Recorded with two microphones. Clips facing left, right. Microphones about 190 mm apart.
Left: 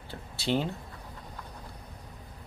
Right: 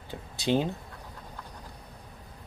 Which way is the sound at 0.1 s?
15° right (ahead or behind).